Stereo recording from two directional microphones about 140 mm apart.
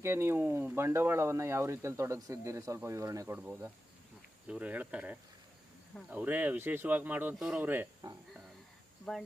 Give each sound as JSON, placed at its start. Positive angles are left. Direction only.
{"t": 0.0, "sound": "speech", "side_deg": -20}